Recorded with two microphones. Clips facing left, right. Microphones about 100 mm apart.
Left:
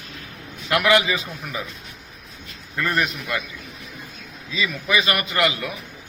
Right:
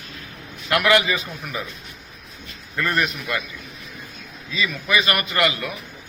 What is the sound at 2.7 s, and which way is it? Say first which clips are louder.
Speech: even; 10° left (ahead or behind).